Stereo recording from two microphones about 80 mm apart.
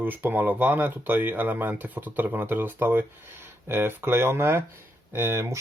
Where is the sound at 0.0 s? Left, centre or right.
Right.